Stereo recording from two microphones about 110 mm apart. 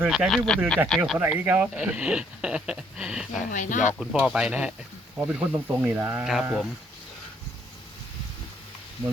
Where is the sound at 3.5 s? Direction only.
90° left.